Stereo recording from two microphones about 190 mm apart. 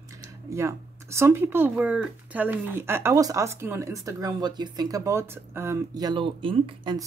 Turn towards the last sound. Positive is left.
turn(degrees=-25)  # may be behind; listen again after turning